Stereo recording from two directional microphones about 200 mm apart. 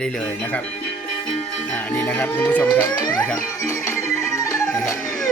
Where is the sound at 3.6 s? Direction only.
15° left (ahead or behind).